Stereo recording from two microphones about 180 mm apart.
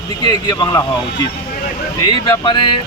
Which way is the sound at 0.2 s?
25° left (ahead or behind).